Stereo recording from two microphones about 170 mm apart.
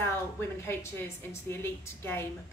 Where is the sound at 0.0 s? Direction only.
15° left (ahead or behind).